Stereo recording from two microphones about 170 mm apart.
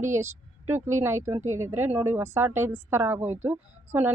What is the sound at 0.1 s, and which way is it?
Speech, 15° right (ahead or behind).